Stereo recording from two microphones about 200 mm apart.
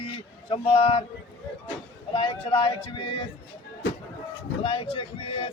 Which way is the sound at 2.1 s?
25° left (ahead or behind).